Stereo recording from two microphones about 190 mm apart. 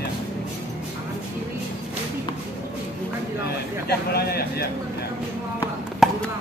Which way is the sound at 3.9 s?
55° left (ahead or behind).